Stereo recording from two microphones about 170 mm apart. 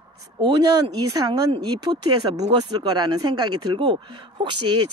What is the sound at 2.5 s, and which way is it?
Speech, 25° right (ahead or behind).